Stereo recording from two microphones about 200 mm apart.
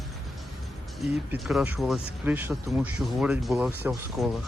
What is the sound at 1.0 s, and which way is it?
Speech, centre (ahead or behind).